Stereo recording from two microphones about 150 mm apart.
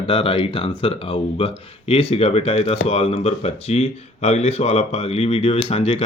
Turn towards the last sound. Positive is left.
turn(degrees=40)  # may be behind; listen again after turning